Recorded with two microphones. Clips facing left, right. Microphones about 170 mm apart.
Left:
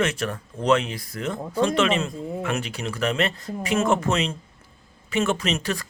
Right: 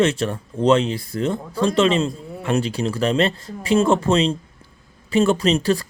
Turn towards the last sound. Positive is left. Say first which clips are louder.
# right 8 dB
turn(degrees=-30)  # may be behind; listen again after turning